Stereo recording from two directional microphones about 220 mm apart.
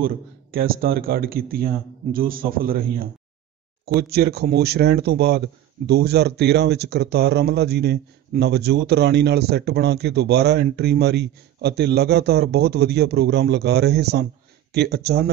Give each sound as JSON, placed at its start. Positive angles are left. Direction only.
{"t": 0.0, "sound": "a man's voice", "side_deg": -40}